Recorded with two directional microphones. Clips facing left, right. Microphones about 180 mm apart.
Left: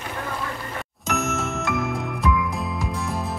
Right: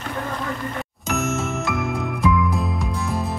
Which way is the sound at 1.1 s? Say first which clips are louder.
Right 2 dB; centre (ahead or behind).